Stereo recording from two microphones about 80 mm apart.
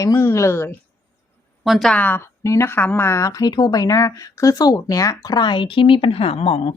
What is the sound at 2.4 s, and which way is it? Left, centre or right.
Speech, left.